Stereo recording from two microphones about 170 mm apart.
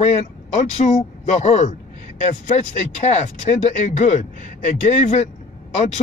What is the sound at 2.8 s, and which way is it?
Speech, 40° left (ahead or behind).